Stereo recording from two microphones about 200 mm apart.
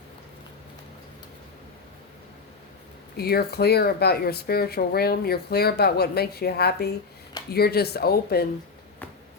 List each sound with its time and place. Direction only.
3.2 s speech: 50° left (ahead or behind)